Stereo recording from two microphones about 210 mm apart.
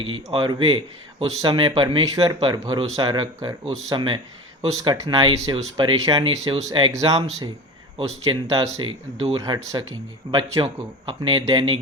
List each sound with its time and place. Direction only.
0.0 s speech: 25° right (ahead or behind)